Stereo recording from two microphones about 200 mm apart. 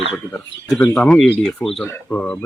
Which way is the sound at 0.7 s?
10° left (ahead or behind).